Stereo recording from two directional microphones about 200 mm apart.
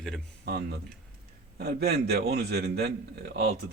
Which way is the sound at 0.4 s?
55° right (ahead or behind).